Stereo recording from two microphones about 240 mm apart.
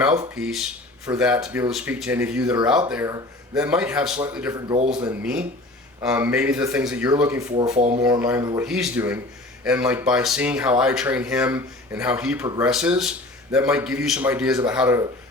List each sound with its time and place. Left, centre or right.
0.0 s speech: centre
0.3 s speech: centre